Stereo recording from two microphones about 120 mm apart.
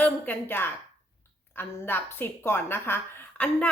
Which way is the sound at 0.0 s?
15° left (ahead or behind).